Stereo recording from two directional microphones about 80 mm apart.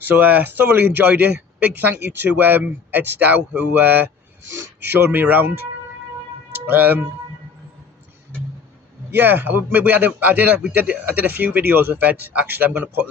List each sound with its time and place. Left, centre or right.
0.0 s speech: right
6.7 s speech: right
9.0 s speech: right